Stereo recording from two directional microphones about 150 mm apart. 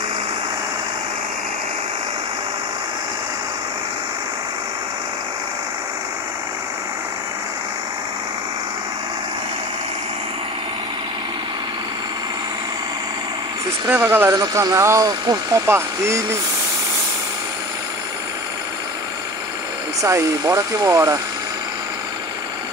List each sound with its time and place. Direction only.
13.8 s speech: 15° right (ahead or behind)
20.0 s speech: 20° right (ahead or behind)